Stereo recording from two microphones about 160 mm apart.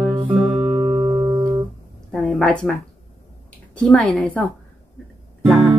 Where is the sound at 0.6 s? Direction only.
20° right (ahead or behind).